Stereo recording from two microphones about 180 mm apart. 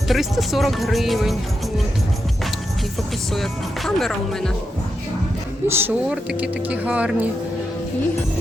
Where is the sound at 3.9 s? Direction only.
Centre (ahead or behind).